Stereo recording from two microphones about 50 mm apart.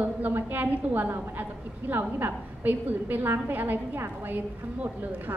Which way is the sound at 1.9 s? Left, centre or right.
Right.